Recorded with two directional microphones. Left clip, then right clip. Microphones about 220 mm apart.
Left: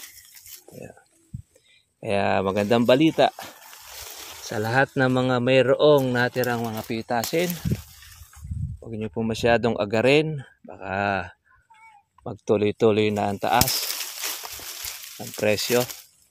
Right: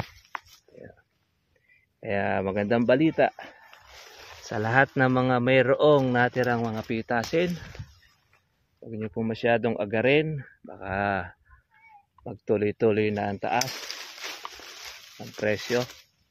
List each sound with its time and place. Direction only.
0.7 s a sound: 45° left (ahead or behind)
2.0 s speech: 25° left (ahead or behind)
4.5 s speech: 10° left (ahead or behind)
8.8 s speech: 30° left (ahead or behind)
10.3 s speech: 20° left (ahead or behind)